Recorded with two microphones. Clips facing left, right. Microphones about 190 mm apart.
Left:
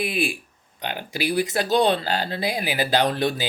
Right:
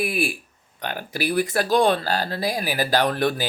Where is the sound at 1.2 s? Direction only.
50° right (ahead or behind).